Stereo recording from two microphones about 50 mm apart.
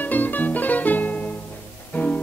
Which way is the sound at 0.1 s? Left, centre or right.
Left.